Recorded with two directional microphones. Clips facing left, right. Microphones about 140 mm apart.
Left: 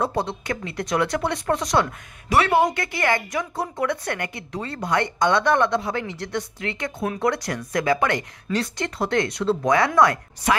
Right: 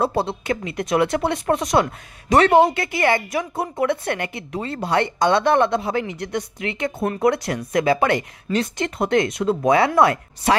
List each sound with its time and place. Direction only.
0.0 s speech: 30° right (ahead or behind)